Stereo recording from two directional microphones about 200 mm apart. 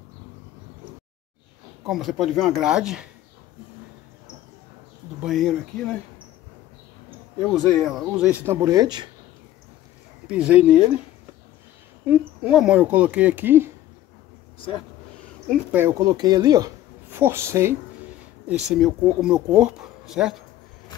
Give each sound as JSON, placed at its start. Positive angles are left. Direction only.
{"t": 1.9, "sound": "speech", "side_deg": 0}
{"t": 5.2, "sound": "speech", "side_deg": 0}
{"t": 7.4, "sound": "speech", "side_deg": 0}
{"t": 10.2, "sound": "speech", "side_deg": -5}
{"t": 12.1, "sound": "speech", "side_deg": -5}
{"t": 15.7, "sound": "speech", "side_deg": -15}